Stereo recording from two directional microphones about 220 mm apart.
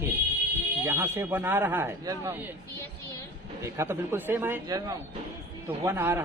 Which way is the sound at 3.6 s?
15° right (ahead or behind).